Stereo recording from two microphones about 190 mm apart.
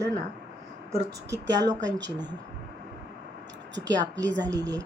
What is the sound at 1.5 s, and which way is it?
Speech, 20° right (ahead or behind).